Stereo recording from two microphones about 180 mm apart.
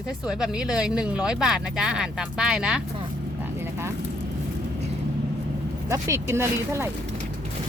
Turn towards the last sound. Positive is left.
turn(degrees=-15)  # may be behind; listen again after turning